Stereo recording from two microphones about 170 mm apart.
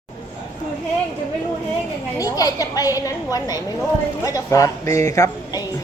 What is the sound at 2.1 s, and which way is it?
Speech, 20° left (ahead or behind).